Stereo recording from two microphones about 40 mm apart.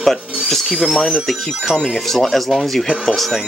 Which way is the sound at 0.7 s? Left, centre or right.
Right.